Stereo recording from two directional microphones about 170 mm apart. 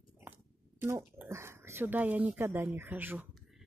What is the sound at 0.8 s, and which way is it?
Speech, 15° right (ahead or behind).